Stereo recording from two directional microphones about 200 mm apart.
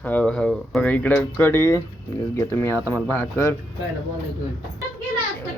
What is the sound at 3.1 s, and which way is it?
Speech, 10° left (ahead or behind).